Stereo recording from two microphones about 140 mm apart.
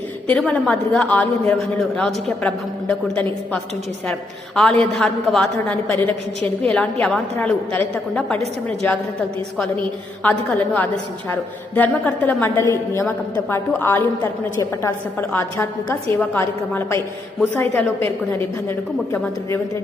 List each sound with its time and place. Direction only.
0.3 s a woman's voice: 5° left (ahead or behind)
10.2 s a woman's voice: 10° left (ahead or behind)